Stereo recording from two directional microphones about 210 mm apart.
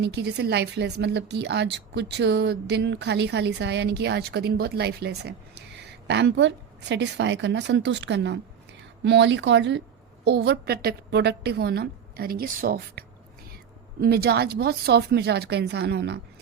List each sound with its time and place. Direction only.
0.0 s a woman's voice: 55° right (ahead or behind)